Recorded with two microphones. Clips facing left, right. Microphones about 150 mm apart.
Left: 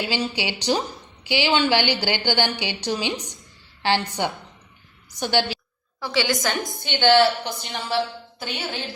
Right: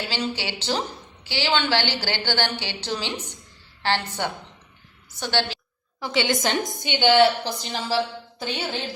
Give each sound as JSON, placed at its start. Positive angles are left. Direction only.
{"t": 0.1, "sound": "a woman's voice", "side_deg": 15}
{"t": 6.1, "sound": "a woman's voice", "side_deg": -25}
{"t": 7.4, "sound": "a woman's voice", "side_deg": -30}